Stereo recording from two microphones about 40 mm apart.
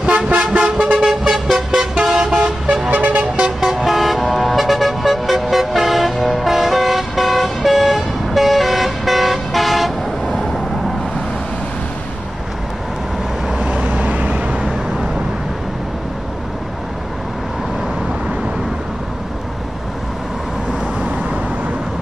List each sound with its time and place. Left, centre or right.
0.3 s vehicle: right
0.9 s vehicle: centre
2.1 s toot: centre
2.6 s vehicle: right
2.9 s vehicle: right
3.6 s vehicle: centre
13.5 s vehicle: right
21.0 s vehicle: right